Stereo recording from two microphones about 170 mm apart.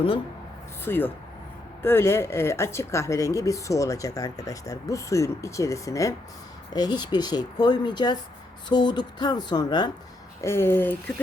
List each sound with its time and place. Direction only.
0.9 s speech: 10° left (ahead or behind)
10.4 s speech: 15° left (ahead or behind)